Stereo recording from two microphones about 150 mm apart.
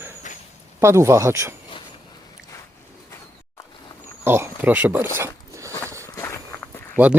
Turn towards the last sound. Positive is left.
turn(degrees=-10)  # may be behind; listen again after turning